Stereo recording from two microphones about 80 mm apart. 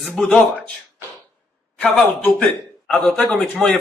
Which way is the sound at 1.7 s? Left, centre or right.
Centre.